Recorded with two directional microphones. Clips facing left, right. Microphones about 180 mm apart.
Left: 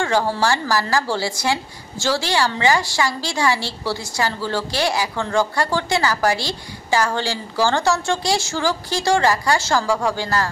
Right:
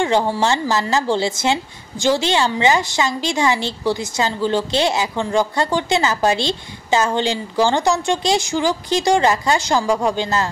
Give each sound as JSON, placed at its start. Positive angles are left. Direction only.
{"t": 0.0, "sound": "a woman's voice", "side_deg": -20}